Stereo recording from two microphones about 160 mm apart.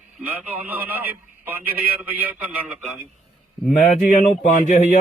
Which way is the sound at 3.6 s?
5° left (ahead or behind).